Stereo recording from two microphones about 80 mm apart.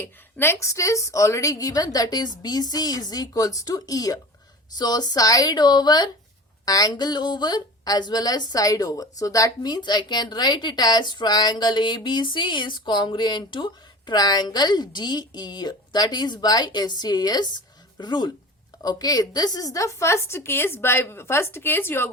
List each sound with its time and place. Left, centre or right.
0.0 s a woman's voice: left
0.5 s a woman's voice: left
9.6 s speech: left
14.1 s a woman's voice: left
18.8 s a woman's voice: left